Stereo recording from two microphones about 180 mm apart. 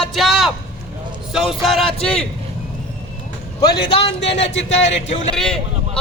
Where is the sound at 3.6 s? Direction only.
25° left (ahead or behind).